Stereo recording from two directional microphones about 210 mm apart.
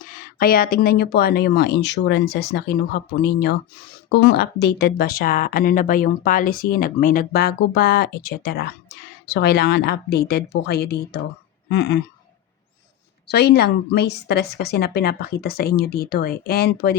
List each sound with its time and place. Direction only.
0.0 s speech: 40° left (ahead or behind)
11.7 s a sound: 55° left (ahead or behind)
13.2 s speech: 50° left (ahead or behind)